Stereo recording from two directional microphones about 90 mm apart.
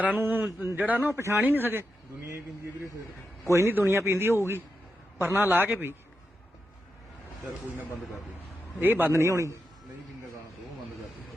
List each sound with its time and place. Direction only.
0.2 s a man's voice: 20° right (ahead or behind)
3.4 s a man's voice: 30° right (ahead or behind)
8.8 s a man's voice: 20° right (ahead or behind)